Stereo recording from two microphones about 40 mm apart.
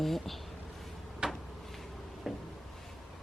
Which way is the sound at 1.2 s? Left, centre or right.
Right.